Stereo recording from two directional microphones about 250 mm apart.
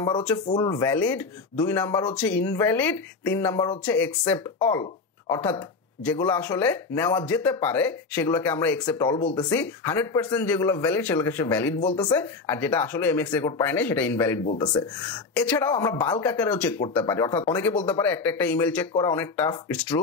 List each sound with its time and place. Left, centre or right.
0.5 s speech: centre
14.4 s speech: left
15.3 s speech: centre